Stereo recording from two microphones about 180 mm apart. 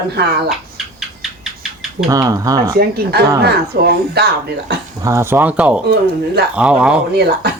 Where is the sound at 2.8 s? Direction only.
60° right (ahead or behind).